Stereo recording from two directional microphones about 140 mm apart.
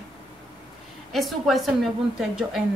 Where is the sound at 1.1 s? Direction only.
Centre (ahead or behind).